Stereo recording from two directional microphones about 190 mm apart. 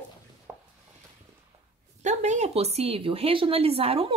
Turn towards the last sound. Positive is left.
turn(degrees=-30)  # may be behind; listen again after turning